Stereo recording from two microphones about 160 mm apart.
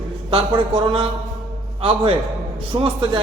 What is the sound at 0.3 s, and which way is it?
A man's voice, 35° right (ahead or behind).